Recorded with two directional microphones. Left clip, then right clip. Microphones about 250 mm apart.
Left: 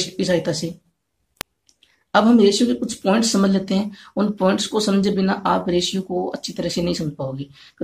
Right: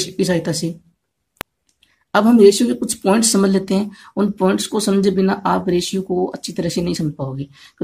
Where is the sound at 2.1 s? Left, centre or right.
Right.